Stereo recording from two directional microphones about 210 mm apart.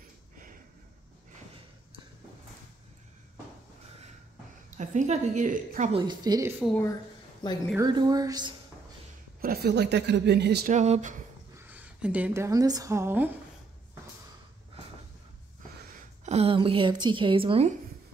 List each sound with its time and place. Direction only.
4.6 s a woman's voice: 35° right (ahead or behind)
5.9 s a woman's voice: 20° right (ahead or behind)
7.4 s a woman's voice: 20° left (ahead or behind)
7.8 s a woman's voice: 20° right (ahead or behind)
9.4 s speech: 45° right (ahead or behind)
10.7 s a woman's voice: 35° right (ahead or behind)
11.5 s a woman's voice: 10° right (ahead or behind)
16.3 s a woman's voice: 30° right (ahead or behind)